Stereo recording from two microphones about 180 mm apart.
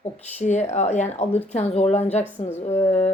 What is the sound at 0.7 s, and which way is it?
Speech, 40° left (ahead or behind).